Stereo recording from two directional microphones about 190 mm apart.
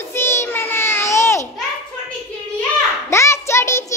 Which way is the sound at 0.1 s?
15° left (ahead or behind).